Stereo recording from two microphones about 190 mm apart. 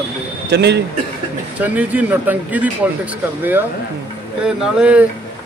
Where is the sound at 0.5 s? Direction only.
65° right (ahead or behind).